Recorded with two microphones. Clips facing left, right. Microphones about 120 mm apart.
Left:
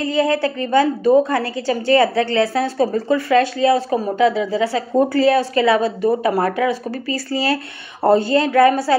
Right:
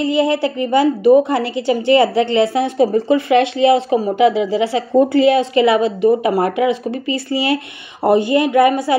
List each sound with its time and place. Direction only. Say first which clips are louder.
0.0 s a woman's voice: right 2 dB; 20° right (ahead or behind)